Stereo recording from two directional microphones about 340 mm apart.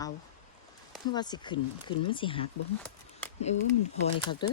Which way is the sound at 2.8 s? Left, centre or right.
Centre.